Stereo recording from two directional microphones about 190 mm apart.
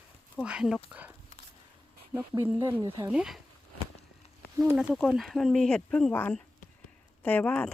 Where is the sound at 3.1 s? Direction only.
5° right (ahead or behind).